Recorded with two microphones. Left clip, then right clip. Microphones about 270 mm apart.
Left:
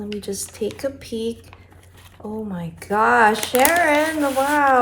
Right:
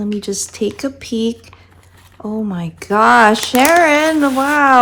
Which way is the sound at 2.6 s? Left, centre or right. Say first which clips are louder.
Right 6 dB; right.